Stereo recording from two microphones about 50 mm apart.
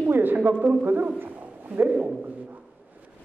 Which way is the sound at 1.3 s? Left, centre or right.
Right.